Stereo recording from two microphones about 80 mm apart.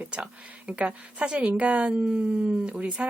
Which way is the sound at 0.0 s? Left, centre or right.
Centre.